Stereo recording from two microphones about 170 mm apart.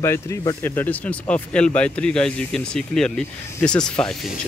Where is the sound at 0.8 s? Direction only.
10° left (ahead or behind).